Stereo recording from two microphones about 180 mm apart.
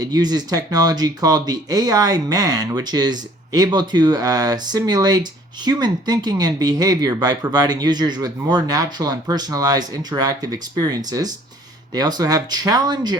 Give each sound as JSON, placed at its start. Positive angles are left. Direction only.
{"t": 0.0, "sound": "speech", "side_deg": -20}